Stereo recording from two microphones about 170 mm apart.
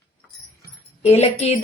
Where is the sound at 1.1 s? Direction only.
40° left (ahead or behind).